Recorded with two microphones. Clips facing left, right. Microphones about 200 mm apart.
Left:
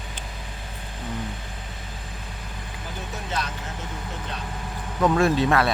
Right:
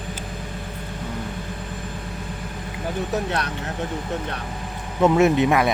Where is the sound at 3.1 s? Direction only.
65° right (ahead or behind).